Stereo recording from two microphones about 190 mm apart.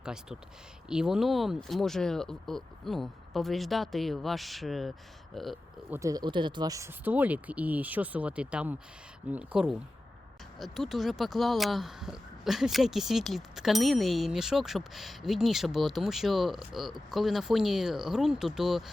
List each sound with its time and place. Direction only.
0.0 s speech: 5° right (ahead or behind)
5.9 s speech: 15° right (ahead or behind); by 18.9 s centre (ahead or behind)